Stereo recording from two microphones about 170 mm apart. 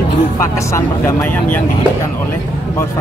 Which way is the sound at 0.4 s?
15° left (ahead or behind).